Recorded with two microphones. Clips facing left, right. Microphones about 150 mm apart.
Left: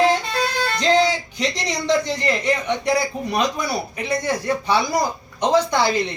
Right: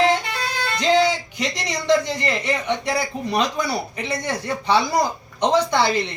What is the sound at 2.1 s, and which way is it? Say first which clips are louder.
A woman's voice: left 2 dB; 15° left (ahead or behind).